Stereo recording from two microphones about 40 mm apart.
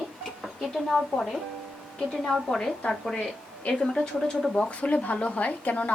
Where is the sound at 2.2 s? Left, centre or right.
Centre.